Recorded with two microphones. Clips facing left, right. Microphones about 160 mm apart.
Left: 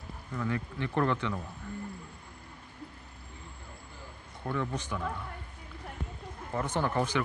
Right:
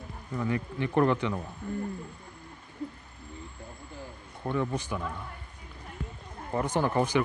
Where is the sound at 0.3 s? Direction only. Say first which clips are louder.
Right 3 dB; 15° right (ahead or behind).